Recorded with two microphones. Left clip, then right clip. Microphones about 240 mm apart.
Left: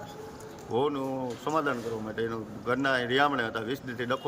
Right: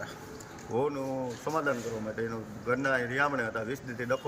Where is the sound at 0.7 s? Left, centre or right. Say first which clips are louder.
Left 2 dB; left.